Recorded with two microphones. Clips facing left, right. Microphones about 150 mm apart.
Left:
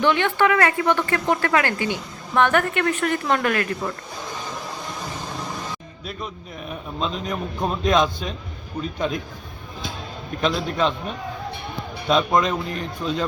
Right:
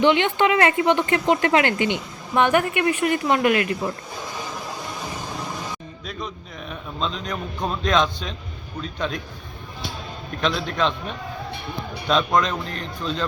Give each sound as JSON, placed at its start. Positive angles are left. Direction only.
{"t": 0.0, "sound": "speech", "side_deg": -20}
{"t": 4.4, "sound": "music", "side_deg": 0}
{"t": 6.1, "sound": "a man's voice", "side_deg": 5}
{"t": 10.4, "sound": "a man's voice", "side_deg": 5}